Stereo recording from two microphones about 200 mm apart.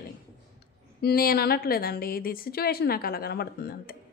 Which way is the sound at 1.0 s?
50° left (ahead or behind).